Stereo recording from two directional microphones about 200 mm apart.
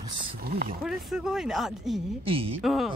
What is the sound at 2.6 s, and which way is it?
Speech, centre (ahead or behind).